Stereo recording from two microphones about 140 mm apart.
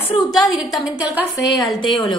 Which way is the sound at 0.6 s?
5° right (ahead or behind).